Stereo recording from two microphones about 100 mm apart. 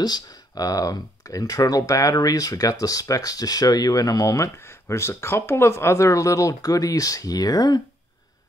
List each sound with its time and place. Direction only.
0.0 s speech: 40° left (ahead or behind)